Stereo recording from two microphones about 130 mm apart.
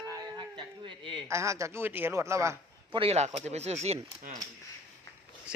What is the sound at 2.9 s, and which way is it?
Speech, 50° right (ahead or behind).